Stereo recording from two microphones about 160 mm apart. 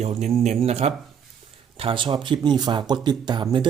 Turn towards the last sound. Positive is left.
turn(degrees=-30)  # may be behind; listen again after turning